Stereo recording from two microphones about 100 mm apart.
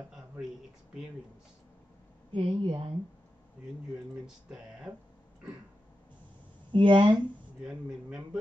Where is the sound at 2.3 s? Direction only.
55° right (ahead or behind).